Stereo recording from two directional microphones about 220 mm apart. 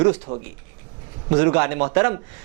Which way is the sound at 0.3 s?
30° right (ahead or behind).